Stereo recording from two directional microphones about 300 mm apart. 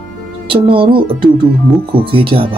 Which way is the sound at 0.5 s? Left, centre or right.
Centre.